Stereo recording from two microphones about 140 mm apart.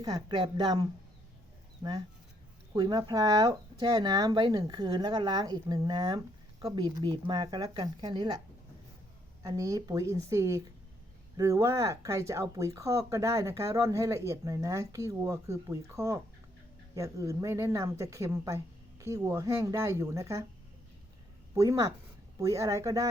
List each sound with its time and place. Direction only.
0.0 s speech: 30° right (ahead or behind)
9.4 s speech: 25° right (ahead or behind)
21.5 s speech: 20° right (ahead or behind)